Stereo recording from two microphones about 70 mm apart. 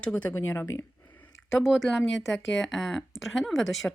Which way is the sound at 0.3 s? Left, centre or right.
Left.